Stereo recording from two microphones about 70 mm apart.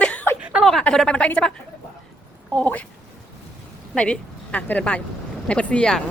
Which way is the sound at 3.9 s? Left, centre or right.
Centre.